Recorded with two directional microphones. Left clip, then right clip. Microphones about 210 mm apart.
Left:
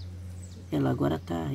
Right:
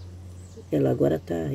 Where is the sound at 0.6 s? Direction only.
15° left (ahead or behind).